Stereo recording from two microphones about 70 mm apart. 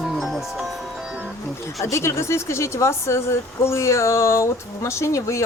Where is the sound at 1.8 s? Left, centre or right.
Left.